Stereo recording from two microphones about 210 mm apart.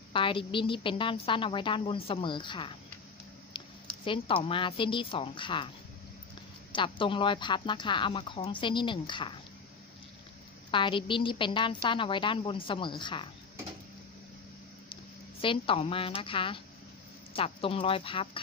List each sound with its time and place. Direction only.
0.1 s a woman's voice: 25° left (ahead or behind)
4.0 s a woman's voice: 25° left (ahead or behind)
6.7 s a woman's voice: 25° left (ahead or behind)
10.7 s a woman's voice: 25° left (ahead or behind)
15.4 s a woman's voice: 25° left (ahead or behind)